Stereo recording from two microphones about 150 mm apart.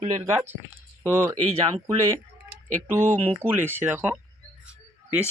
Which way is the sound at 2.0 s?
15° right (ahead or behind).